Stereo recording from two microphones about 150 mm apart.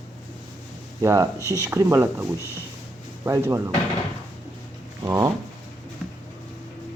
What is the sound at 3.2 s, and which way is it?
Speech, 20° right (ahead or behind).